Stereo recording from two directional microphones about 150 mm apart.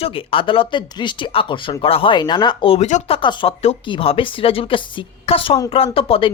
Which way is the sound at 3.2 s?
35° left (ahead or behind).